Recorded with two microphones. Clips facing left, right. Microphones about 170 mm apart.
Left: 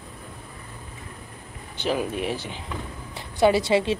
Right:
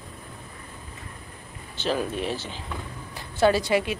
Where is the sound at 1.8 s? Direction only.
15° left (ahead or behind).